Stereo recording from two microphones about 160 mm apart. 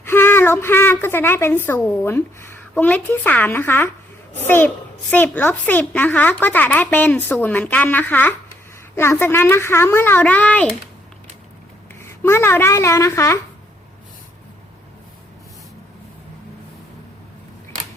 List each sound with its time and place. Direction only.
0.0 s a woman's voice: 15° left (ahead or behind)
11.9 s a woman's voice: 15° left (ahead or behind)